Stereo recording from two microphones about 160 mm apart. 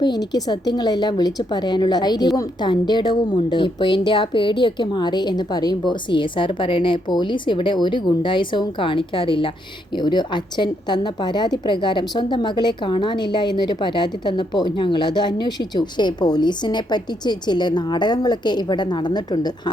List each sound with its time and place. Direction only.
0.0 s a woman's voice: 25° left (ahead or behind)